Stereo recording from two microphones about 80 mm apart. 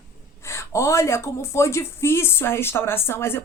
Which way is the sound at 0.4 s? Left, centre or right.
Left.